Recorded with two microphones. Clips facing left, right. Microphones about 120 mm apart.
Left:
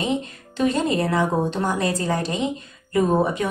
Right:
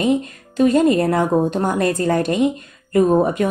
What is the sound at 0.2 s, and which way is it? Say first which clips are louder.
Speech: right 6 dB; 45° right (ahead or behind).